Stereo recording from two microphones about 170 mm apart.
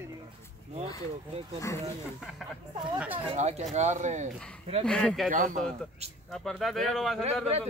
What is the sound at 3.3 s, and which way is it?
Speech, 40° right (ahead or behind).